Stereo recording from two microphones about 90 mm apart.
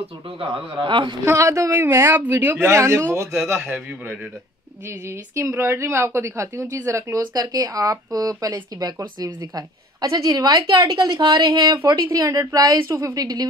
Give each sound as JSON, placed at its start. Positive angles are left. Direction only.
{"t": 0.4, "sound": "speech", "side_deg": -70}
{"t": 1.2, "sound": "a woman's voice", "side_deg": -35}
{"t": 3.6, "sound": "a man's voice", "side_deg": -20}
{"t": 5.3, "sound": "a woman's voice", "side_deg": -30}